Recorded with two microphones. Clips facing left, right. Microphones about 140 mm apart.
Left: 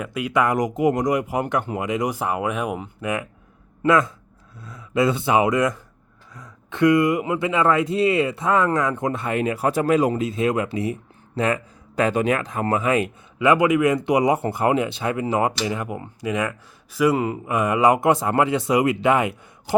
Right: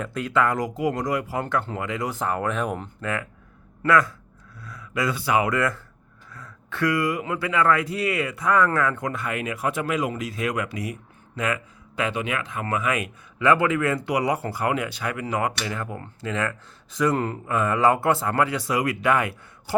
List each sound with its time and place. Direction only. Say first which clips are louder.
0.0 s speech: left 2 dB; 10° left (ahead or behind); by 13.1 s 30° left (ahead or behind)
13.4 s speech: left 3 dB; 15° left (ahead or behind)